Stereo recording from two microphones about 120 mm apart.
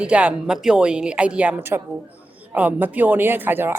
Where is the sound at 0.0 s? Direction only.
10° right (ahead or behind).